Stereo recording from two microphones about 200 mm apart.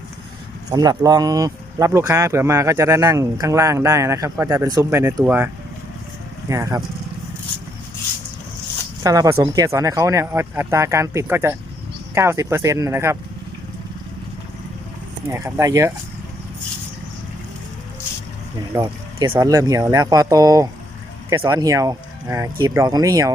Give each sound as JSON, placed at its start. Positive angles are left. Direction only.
{"t": 0.7, "sound": "speech", "side_deg": -20}
{"t": 6.5, "sound": "speech", "side_deg": -15}
{"t": 9.0, "sound": "speech", "side_deg": -15}
{"t": 15.3, "sound": "speech", "side_deg": -15}
{"t": 18.7, "sound": "speech", "side_deg": -20}